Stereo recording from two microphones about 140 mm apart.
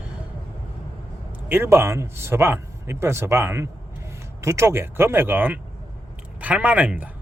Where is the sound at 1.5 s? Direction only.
15° right (ahead or behind).